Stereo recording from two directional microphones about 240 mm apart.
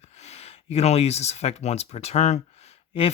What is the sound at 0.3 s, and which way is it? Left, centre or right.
Speech, left.